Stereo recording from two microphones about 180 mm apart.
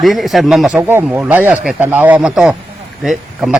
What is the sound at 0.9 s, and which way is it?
Speech, 10° right (ahead or behind).